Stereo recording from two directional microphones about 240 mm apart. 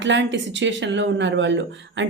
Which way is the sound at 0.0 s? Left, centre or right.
Right.